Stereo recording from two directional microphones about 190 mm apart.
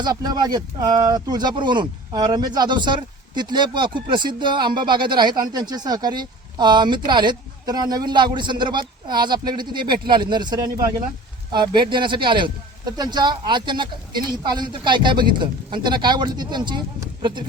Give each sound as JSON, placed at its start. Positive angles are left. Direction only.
{"t": 0.0, "sound": "speech", "side_deg": -20}